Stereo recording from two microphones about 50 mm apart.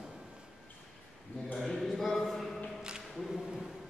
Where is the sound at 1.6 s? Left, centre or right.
Centre.